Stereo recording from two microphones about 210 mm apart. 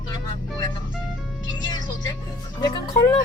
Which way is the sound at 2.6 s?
20° left (ahead or behind).